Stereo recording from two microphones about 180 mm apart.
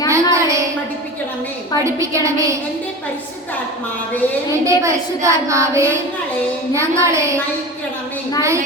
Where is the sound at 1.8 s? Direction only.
15° right (ahead or behind).